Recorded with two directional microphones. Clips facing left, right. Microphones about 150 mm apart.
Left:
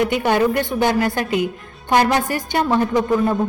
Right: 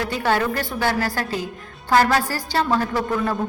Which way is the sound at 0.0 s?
20° left (ahead or behind).